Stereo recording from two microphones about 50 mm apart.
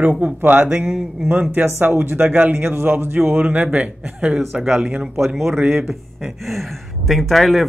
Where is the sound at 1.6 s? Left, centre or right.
Right.